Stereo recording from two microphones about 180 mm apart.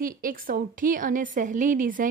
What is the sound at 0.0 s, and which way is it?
A woman's voice, 50° right (ahead or behind).